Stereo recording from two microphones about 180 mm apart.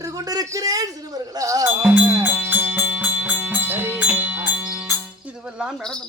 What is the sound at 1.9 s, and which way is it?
Music, 10° right (ahead or behind).